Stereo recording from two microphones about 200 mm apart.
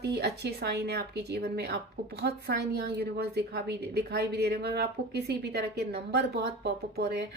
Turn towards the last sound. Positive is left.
turn(degrees=-50)  # may be behind; listen again after turning